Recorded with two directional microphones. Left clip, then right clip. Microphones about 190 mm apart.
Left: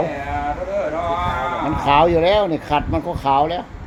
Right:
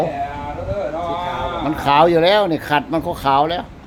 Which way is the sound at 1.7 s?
20° right (ahead or behind).